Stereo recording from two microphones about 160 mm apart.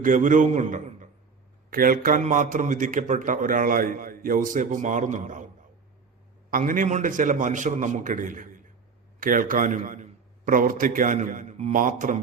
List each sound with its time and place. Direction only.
0.0 s a man's voice: 55° right (ahead or behind)
1.7 s a man's voice: 65° right (ahead or behind)
6.5 s a man's voice: 60° right (ahead or behind)
11.7 s a man's voice: 55° right (ahead or behind)